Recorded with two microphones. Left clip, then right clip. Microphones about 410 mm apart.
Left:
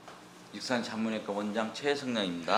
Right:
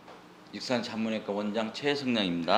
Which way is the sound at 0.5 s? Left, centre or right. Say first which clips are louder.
Right 2 dB; right.